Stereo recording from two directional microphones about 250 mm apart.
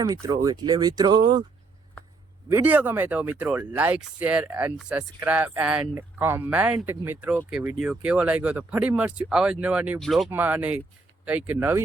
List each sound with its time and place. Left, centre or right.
0.0 s speech: centre
2.5 s speech: centre